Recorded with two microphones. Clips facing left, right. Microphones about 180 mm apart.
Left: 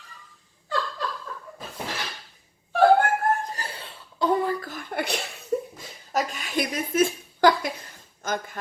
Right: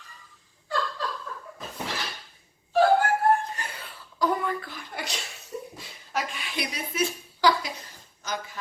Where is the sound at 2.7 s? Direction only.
55° left (ahead or behind).